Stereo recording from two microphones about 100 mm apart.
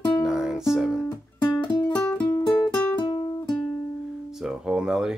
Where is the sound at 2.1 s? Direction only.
15° left (ahead or behind).